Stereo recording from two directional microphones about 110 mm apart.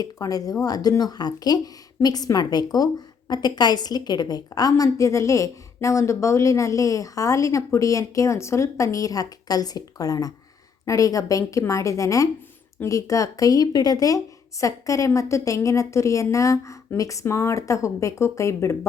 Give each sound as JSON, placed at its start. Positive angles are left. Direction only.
{"t": 0.0, "sound": "a woman's voice", "side_deg": 35}